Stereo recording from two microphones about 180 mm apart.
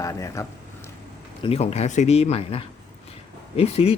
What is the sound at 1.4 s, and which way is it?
Speech, 35° left (ahead or behind).